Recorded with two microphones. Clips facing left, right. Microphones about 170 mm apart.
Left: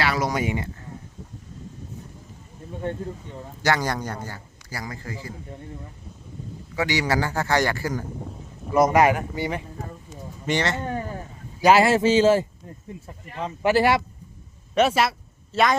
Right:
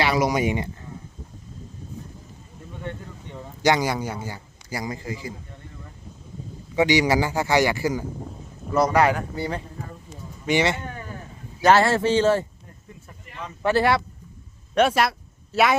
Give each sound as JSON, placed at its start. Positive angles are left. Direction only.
{"t": 0.0, "sound": "a man's voice", "side_deg": -15}
{"t": 3.6, "sound": "a man's voice", "side_deg": -15}
{"t": 6.7, "sound": "a man's voice", "side_deg": -20}
{"t": 8.7, "sound": "speech", "side_deg": 20}
{"t": 10.4, "sound": "a man's voice", "side_deg": -10}
{"t": 11.6, "sound": "speech", "side_deg": 10}
{"t": 13.6, "sound": "speech", "side_deg": 15}
{"t": 14.8, "sound": "speech", "side_deg": 0}